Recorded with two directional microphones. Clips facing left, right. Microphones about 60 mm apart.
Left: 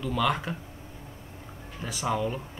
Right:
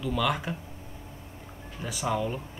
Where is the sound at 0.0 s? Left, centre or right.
Centre.